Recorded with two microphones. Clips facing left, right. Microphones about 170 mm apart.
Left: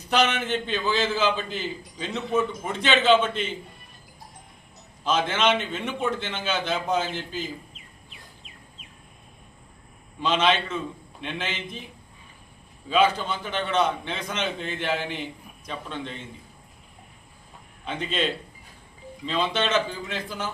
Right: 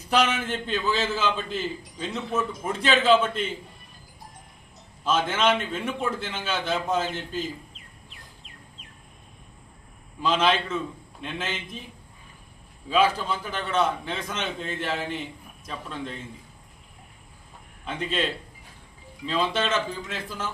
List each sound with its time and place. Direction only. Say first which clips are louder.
0.1 s a man's voice: left 1 dB; 5° right (ahead or behind)
5.0 s a man's voice: even; 5° right (ahead or behind)
10.2 s a man's voice: even; 5° right (ahead or behind)
12.9 s a man's voice: left 1 dB; 5° right (ahead or behind)
17.8 s a man's voice: left 1 dB; 5° right (ahead or behind)